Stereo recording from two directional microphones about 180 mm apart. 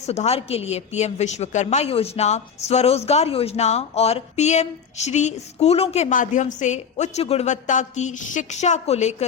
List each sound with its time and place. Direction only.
0.0 s a woman's voice: 35° left (ahead or behind)